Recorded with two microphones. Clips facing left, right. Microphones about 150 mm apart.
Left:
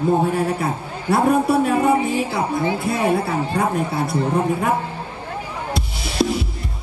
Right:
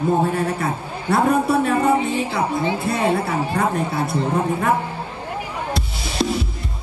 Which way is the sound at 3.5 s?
20° left (ahead or behind).